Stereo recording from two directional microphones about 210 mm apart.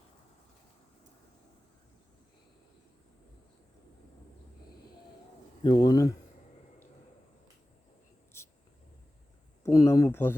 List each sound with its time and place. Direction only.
5.6 s speech: 20° left (ahead or behind)
9.7 s speech: 15° left (ahead or behind)